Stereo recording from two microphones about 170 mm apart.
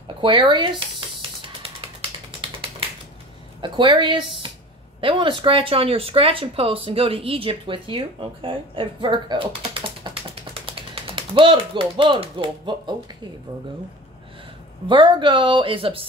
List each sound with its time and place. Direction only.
0.2 s speech: 30° right (ahead or behind)
3.6 s speech: 30° right (ahead or behind)
14.9 s speech: 30° right (ahead or behind)